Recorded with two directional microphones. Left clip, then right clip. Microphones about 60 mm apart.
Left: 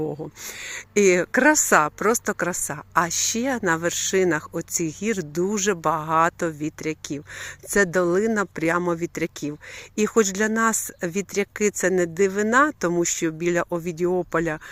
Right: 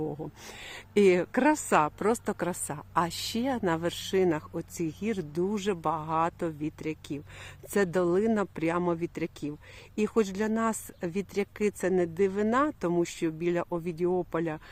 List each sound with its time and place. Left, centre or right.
0.6 s speech: centre
1.1 s speech: left
1.5 s speech: left
2.0 s speech: centre
3.4 s speech: centre
4.0 s speech: left
7.7 s speech: left
11.0 s speech: left